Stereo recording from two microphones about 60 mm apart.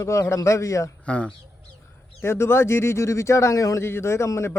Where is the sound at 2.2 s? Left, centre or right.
Left.